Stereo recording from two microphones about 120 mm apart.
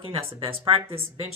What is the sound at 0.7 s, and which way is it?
Speech, 50° right (ahead or behind).